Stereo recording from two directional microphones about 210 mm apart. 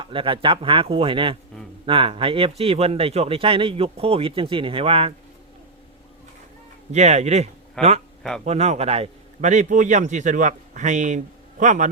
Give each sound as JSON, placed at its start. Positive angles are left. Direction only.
{"t": 0.0, "sound": "speech", "side_deg": -25}
{"t": 6.9, "sound": "a man's voice", "side_deg": -30}